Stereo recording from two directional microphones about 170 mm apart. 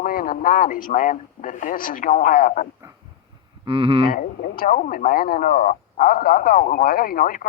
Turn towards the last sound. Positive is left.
turn(degrees=55)  # may be behind; listen again after turning